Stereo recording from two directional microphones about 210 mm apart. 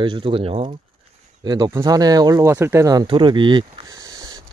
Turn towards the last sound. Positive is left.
turn(degrees=-20)  # may be behind; listen again after turning